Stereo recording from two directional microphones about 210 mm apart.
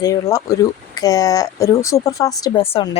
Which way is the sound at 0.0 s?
15° left (ahead or behind).